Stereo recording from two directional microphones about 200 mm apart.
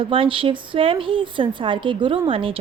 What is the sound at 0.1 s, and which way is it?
Speech, 25° right (ahead or behind).